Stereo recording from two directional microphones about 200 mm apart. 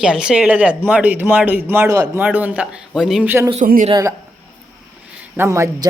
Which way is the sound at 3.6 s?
45° right (ahead or behind).